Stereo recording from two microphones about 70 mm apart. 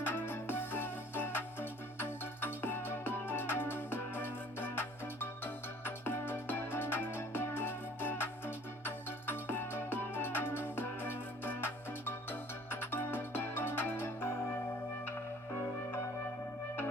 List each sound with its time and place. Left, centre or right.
0.0 s music: left